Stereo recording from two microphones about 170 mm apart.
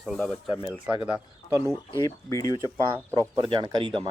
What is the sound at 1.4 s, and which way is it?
Speech, 15° right (ahead or behind).